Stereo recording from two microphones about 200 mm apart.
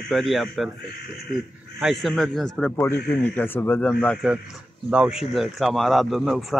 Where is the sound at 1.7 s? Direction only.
Centre (ahead or behind).